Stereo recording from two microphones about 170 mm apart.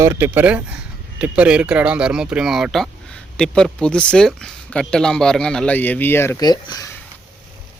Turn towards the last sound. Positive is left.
turn(degrees=25)  # may be behind; listen again after turning